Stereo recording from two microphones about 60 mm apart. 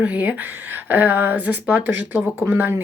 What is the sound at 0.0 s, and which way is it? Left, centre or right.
Speech, right.